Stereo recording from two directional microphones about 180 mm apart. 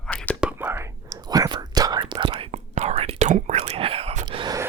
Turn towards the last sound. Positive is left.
turn(degrees=-25)  # may be behind; listen again after turning